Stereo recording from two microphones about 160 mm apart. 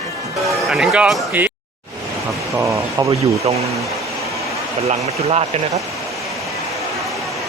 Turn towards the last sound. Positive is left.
turn(degrees=0)  # may be behind; listen again after turning